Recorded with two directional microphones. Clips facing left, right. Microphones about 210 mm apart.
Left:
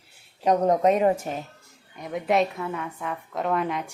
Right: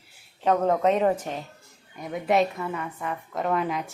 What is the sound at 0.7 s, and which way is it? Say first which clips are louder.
A woman's voice: left 2 dB; 15° left (ahead or behind).